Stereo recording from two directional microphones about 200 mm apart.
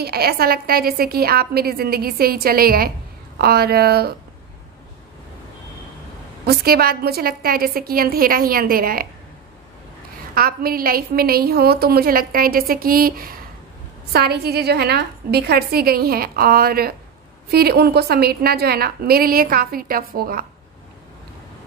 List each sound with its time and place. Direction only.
0.0 s a woman's voice: 50° right (ahead or behind)
6.4 s a woman's voice: 50° right (ahead or behind)
10.3 s a woman's voice: 45° right (ahead or behind)